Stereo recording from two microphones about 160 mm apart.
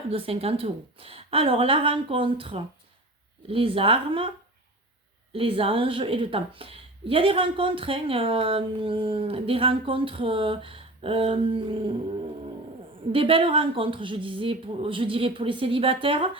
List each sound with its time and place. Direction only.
0.1 s a woman's voice: 35° right (ahead or behind)
5.3 s a woman's voice: 35° right (ahead or behind)
13.1 s a woman's voice: 35° right (ahead or behind)